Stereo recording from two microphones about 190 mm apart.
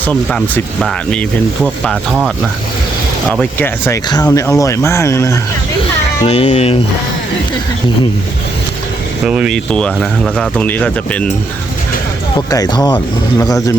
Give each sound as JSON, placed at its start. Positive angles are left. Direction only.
{"t": 0.0, "sound": "speech", "side_deg": 5}
{"t": 4.3, "sound": "speech", "side_deg": 15}
{"t": 6.2, "sound": "speech", "side_deg": 35}
{"t": 9.2, "sound": "speech", "side_deg": -5}
{"t": 12.5, "sound": "speech", "side_deg": 20}